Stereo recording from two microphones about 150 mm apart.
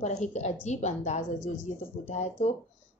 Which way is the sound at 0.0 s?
50° left (ahead or behind).